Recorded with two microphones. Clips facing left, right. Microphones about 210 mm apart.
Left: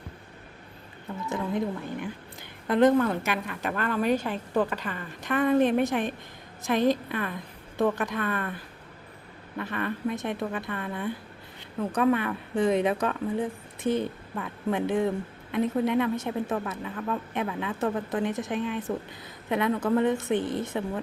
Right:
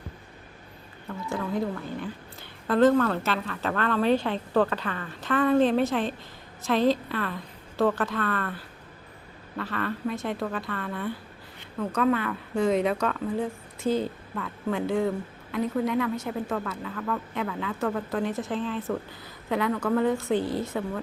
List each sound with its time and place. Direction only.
1.3 s a woman's voice: 20° left (ahead or behind)
9.6 s speech: 20° left (ahead or behind)
14.3 s speech: 20° left (ahead or behind)